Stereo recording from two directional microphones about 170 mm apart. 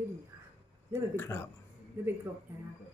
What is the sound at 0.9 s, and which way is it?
Speech, 15° left (ahead or behind).